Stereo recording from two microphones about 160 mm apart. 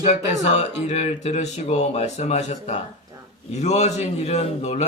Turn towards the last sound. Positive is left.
turn(degrees=45)  # may be behind; listen again after turning